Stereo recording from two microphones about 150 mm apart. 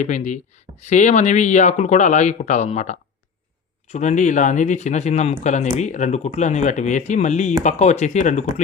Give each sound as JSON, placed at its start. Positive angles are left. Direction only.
{"t": 0.0, "sound": "speech", "side_deg": 55}